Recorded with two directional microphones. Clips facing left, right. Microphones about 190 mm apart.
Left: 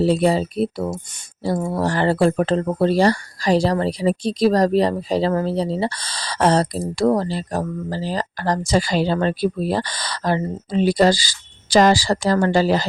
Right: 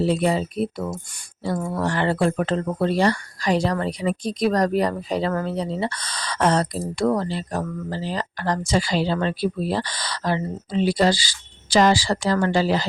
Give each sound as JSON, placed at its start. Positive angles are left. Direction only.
{"t": 0.0, "sound": "speech", "side_deg": 35}